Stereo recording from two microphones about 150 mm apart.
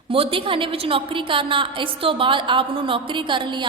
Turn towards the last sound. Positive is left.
turn(degrees=-30)  # may be behind; listen again after turning